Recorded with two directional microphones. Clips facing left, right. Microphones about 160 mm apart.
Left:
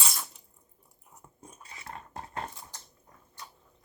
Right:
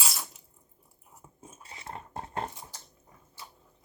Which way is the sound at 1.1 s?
5° right (ahead or behind).